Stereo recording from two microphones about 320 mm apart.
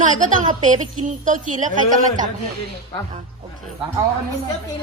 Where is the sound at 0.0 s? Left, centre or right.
Right.